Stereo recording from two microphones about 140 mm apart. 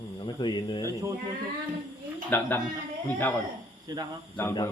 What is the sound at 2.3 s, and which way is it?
Speech, 15° left (ahead or behind).